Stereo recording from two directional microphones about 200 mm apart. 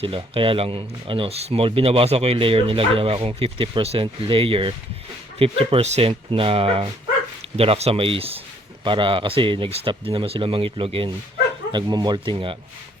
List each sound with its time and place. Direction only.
0.0 s speech: 25° right (ahead or behind)